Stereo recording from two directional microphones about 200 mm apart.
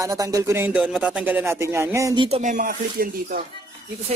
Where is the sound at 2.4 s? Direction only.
40° right (ahead or behind).